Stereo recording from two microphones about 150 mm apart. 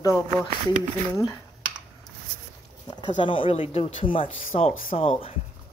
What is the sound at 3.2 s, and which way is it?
Speech, 35° left (ahead or behind).